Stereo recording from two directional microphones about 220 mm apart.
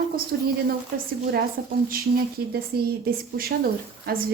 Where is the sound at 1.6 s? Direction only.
45° right (ahead or behind).